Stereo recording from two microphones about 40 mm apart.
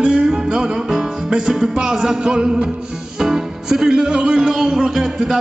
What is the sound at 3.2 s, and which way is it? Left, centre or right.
Speech, centre.